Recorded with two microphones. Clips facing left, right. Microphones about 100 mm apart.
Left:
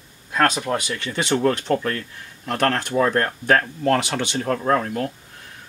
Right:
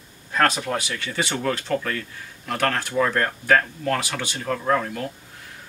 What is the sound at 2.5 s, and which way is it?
Speech, 25° left (ahead or behind).